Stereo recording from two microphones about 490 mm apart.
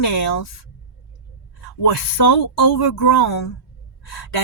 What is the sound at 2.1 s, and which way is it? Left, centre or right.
Speech, left.